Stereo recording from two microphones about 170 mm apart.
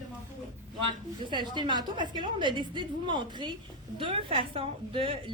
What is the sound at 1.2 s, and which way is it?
A woman's voice, 25° right (ahead or behind).